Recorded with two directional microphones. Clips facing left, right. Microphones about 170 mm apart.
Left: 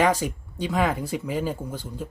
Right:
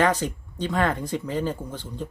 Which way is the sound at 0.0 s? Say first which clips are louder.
Even; 10° left (ahead or behind).